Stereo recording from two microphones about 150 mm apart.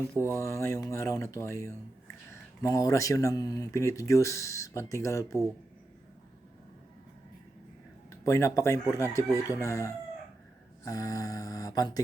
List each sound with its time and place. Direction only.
0.2 s speech: 15° left (ahead or behind)
8.2 s speech: 20° left (ahead or behind)